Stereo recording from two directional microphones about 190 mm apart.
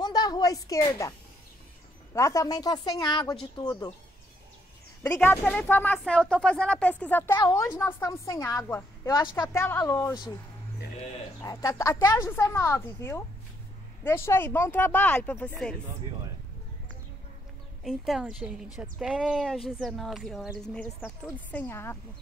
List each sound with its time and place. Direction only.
0.0 s a sound: 20° left (ahead or behind)
2.1 s a woman's voice: 15° left (ahead or behind)
5.0 s a woman's voice: 10° left (ahead or behind)
7.3 s a woman's voice: 20° left (ahead or behind)
11.4 s a woman's voice: 15° left (ahead or behind)
17.8 s a woman's voice: centre (ahead or behind)